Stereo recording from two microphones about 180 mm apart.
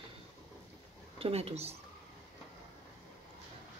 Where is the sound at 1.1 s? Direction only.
35° right (ahead or behind).